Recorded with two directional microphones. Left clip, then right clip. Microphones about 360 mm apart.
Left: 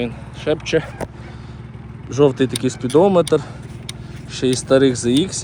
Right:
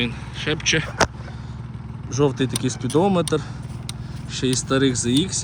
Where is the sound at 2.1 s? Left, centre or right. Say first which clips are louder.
Left 6 dB; centre.